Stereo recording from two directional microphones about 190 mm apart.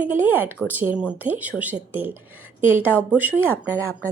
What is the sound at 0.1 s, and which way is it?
A woman's voice, 10° right (ahead or behind).